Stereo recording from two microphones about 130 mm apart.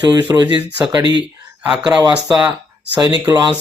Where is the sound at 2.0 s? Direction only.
30° right (ahead or behind).